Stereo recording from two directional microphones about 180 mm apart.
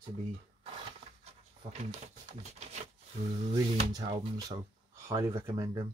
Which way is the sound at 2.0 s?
40° right (ahead or behind).